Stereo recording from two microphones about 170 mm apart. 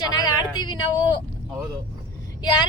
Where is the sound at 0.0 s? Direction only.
25° left (ahead or behind).